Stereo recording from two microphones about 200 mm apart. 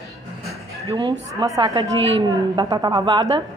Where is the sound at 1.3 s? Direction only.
20° right (ahead or behind).